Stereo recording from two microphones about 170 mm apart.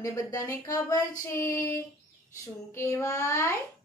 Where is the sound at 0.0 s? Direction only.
20° left (ahead or behind).